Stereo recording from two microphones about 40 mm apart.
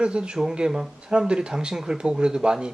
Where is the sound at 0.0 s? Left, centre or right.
Right.